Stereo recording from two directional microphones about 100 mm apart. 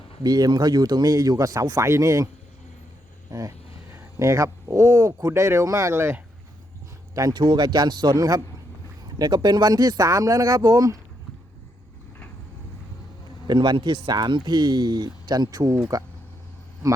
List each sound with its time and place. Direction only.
0.2 s speech: 40° right (ahead or behind)
3.9 s speech: 30° right (ahead or behind)
7.1 s speech: 40° right (ahead or behind)
13.5 s speech: 50° right (ahead or behind)